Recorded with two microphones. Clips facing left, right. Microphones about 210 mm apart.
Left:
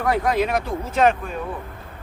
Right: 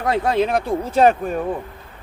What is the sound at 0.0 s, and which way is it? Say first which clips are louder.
Speech: right 2 dB; 25° right (ahead or behind).